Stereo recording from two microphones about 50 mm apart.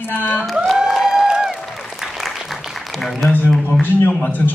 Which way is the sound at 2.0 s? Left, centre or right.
Centre.